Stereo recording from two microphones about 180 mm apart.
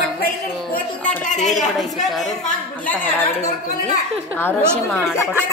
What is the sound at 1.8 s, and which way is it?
A child's voice, centre (ahead or behind).